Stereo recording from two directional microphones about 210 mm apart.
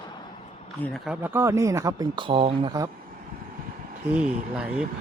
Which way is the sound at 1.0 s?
5° right (ahead or behind).